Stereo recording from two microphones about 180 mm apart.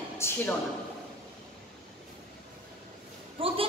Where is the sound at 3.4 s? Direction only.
30° right (ahead or behind).